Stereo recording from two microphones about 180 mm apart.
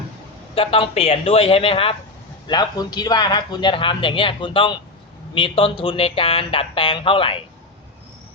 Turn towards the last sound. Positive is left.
turn(degrees=30)  # may be behind; listen again after turning